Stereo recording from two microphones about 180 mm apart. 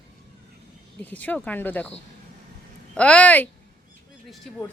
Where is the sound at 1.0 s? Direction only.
10° left (ahead or behind).